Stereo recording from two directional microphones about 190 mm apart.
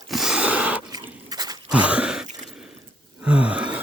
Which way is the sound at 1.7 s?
5° right (ahead or behind).